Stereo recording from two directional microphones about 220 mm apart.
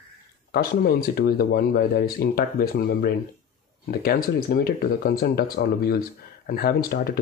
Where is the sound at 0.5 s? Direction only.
45° left (ahead or behind).